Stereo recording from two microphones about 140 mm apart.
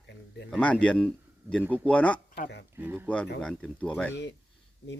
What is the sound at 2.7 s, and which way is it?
Speech, 15° right (ahead or behind).